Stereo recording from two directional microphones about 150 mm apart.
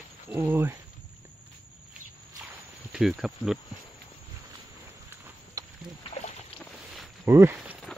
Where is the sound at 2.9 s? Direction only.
5° right (ahead or behind).